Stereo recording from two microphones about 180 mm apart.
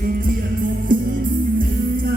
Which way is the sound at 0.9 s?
50° right (ahead or behind).